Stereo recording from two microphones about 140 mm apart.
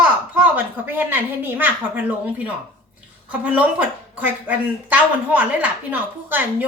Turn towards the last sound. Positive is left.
turn(degrees=-15)  # may be behind; listen again after turning